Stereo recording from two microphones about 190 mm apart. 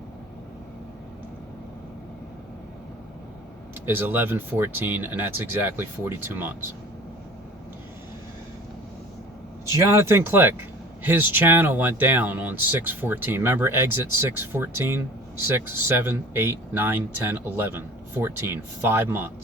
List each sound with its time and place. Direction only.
3.8 s speech: 10° right (ahead or behind)
9.6 s speech: 15° right (ahead or behind)